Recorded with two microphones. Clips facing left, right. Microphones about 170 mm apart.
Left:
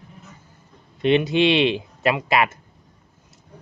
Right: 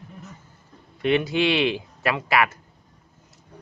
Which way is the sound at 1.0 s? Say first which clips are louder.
Left 3 dB; 20° left (ahead or behind).